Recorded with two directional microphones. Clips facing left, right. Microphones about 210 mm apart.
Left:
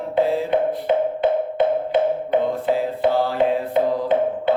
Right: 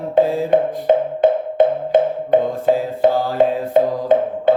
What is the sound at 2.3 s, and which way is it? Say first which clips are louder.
Music: right 4 dB; 45° right (ahead or behind).